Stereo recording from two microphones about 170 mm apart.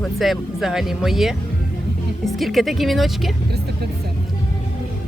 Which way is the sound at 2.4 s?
Centre (ahead or behind).